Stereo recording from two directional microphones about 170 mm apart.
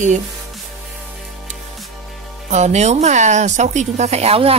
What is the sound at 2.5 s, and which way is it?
Speech, 45° right (ahead or behind).